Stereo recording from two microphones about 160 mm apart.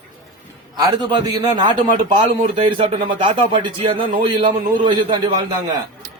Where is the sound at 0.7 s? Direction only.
25° right (ahead or behind).